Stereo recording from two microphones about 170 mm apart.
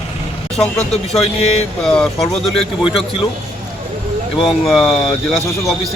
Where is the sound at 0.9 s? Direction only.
40° left (ahead or behind).